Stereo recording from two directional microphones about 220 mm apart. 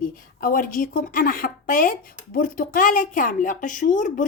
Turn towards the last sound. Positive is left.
turn(degrees=35)  # may be behind; listen again after turning